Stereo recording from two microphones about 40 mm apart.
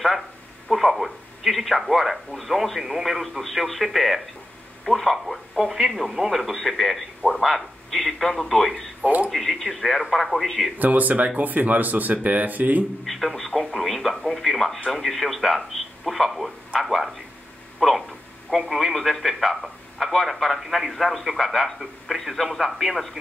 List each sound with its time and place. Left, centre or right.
0.7 s a man's voice: centre
9.0 s speech: right
9.3 s a man's voice: centre
10.8 s speech: right
13.0 s a man's voice: centre